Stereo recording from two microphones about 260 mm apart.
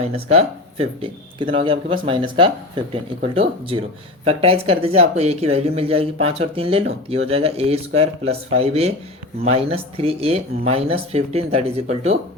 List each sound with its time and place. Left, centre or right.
0.0 s speech: right